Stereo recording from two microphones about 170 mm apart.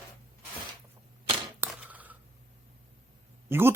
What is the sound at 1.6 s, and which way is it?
Typewriter, 10° right (ahead or behind).